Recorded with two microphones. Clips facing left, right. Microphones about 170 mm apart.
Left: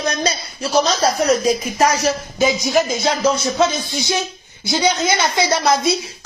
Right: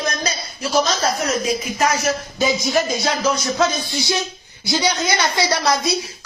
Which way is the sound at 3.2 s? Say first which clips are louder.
Left 3 dB; 30° left (ahead or behind).